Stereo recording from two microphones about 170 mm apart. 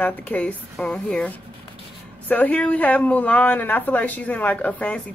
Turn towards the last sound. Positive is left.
turn(degrees=10)  # may be behind; listen again after turning